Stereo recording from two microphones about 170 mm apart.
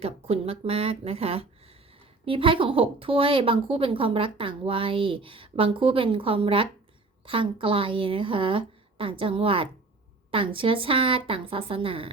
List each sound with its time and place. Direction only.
0.0 s a woman's voice: 35° right (ahead or behind)